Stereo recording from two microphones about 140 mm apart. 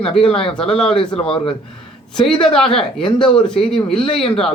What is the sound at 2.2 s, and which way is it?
Speech, 5° left (ahead or behind).